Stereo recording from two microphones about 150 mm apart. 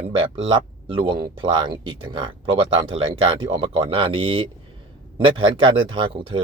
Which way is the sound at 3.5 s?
35° right (ahead or behind).